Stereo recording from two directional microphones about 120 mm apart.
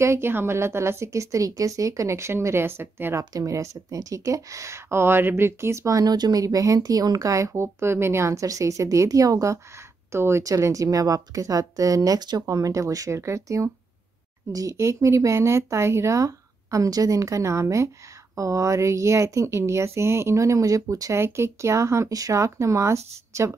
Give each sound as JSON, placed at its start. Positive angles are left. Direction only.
{"t": 0.0, "sound": "a woman's voice", "side_deg": -20}